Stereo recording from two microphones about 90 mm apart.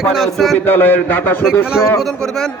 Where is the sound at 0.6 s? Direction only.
20° left (ahead or behind).